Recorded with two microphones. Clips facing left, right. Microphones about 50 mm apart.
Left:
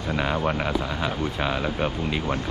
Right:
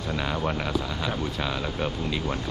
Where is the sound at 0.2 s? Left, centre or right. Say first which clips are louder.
Left 4 dB; centre.